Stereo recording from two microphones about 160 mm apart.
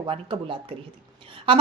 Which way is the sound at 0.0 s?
30° right (ahead or behind).